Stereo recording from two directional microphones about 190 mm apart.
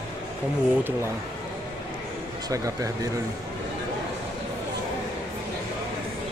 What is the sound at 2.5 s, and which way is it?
Speech, 15° right (ahead or behind).